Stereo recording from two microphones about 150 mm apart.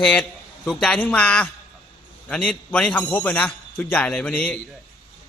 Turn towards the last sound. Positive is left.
turn(degrees=5)  # may be behind; listen again after turning